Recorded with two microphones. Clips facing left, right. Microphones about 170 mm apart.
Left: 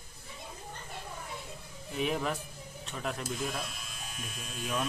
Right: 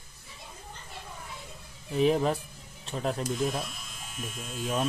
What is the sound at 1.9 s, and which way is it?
Speech, 35° right (ahead or behind).